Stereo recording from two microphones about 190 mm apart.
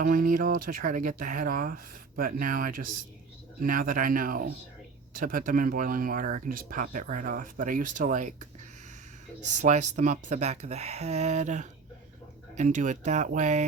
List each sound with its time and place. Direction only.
0.0 s speech: 45° right (ahead or behind)
9.6 s speech: 40° right (ahead or behind)